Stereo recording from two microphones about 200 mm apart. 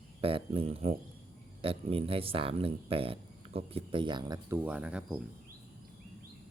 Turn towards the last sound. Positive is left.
turn(degrees=-5)  # may be behind; listen again after turning